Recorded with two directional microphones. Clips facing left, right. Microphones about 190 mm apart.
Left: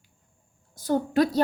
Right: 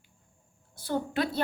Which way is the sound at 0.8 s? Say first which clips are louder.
Left 7 dB; 45° left (ahead or behind).